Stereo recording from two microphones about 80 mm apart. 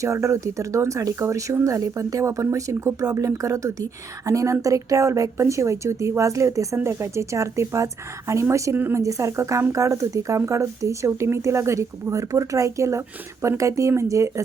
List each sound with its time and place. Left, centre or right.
0.0 s speech: right
8.7 s a woman's voice: right
9.0 s speech: right